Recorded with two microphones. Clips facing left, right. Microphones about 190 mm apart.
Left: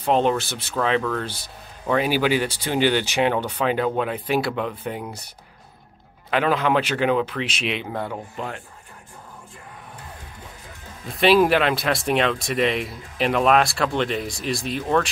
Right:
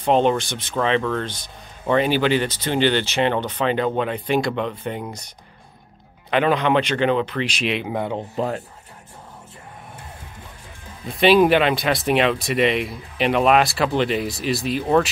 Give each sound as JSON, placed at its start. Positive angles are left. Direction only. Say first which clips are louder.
{"t": 0.0, "sound": "speech", "louder": "right 2 dB", "side_deg": 0}
{"t": 6.3, "sound": "speech", "louder": "right 2 dB", "side_deg": 0}
{"t": 7.9, "sound": "speech", "louder": "right 4 dB", "side_deg": -20}
{"t": 8.4, "sound": "speech", "louder": "right 10 dB", "side_deg": -40}
{"t": 11.1, "sound": "speech", "louder": "right 2 dB", "side_deg": 0}